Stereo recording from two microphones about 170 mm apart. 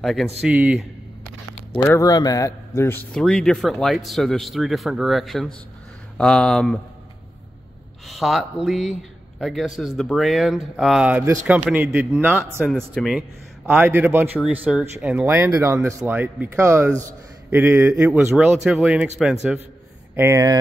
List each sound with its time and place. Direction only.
0.0 s a man's voice: centre (ahead or behind)
1.8 s a man's voice: 15° left (ahead or behind)
8.1 s a man's voice: centre (ahead or behind)
12.9 s a man's voice: centre (ahead or behind)
13.7 s speech: 10° right (ahead or behind)
20.2 s speech: 15° right (ahead or behind)